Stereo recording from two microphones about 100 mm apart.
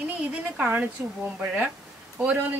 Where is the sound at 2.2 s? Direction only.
15° right (ahead or behind).